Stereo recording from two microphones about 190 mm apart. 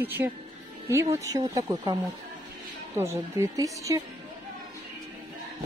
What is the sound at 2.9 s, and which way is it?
A woman's voice, 15° right (ahead or behind).